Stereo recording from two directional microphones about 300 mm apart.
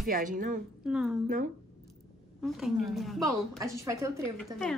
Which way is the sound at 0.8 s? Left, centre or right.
Centre.